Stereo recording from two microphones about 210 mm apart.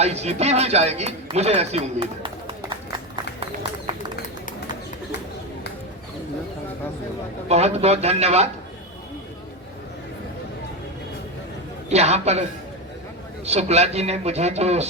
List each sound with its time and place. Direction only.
0.0 s speech: 30° right (ahead or behind)
3.9 s run: 20° right (ahead or behind)
7.4 s speech: 30° right (ahead or behind)
11.9 s speech: 30° right (ahead or behind)